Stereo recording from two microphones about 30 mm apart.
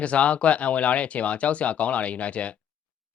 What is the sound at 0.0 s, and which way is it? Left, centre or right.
Speech, left.